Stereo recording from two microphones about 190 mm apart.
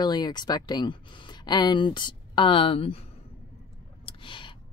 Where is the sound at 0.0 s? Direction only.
20° left (ahead or behind).